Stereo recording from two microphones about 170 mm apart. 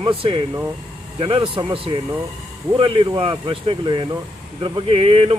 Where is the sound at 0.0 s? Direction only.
30° right (ahead or behind).